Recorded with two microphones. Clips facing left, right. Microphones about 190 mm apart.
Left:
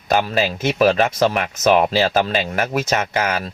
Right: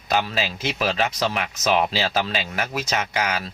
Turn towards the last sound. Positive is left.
turn(degrees=50)  # may be behind; listen again after turning